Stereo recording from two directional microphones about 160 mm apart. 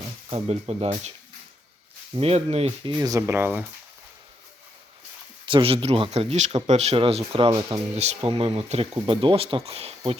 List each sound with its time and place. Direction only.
0.3 s speech: 40° right (ahead or behind)
2.1 s speech: 40° right (ahead or behind); by 3.7 s 15° right (ahead or behind)
5.5 s speech: 35° right (ahead or behind)